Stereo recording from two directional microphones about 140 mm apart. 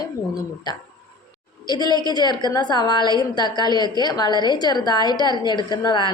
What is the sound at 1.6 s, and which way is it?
A woman's voice, 30° left (ahead or behind).